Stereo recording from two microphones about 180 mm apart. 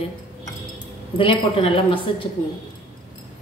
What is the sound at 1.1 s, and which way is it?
A woman's voice, 30° left (ahead or behind).